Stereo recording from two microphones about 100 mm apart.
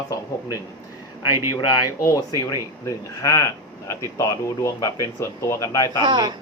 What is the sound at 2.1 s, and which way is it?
Speech, 35° left (ahead or behind).